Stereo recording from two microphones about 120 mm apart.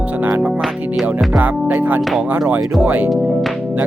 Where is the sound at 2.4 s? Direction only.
10° right (ahead or behind).